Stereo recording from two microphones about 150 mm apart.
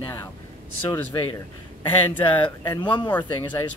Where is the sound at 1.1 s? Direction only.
30° left (ahead or behind).